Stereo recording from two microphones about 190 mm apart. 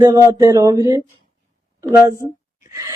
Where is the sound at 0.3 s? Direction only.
20° right (ahead or behind).